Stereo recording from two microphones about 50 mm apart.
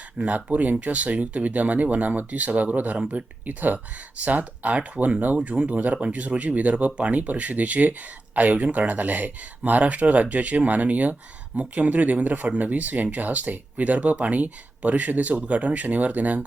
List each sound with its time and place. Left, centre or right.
0.2 s speech: centre
0.5 s speech: right